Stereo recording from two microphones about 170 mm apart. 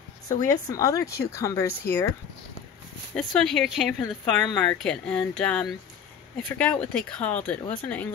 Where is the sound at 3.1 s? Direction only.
5° left (ahead or behind).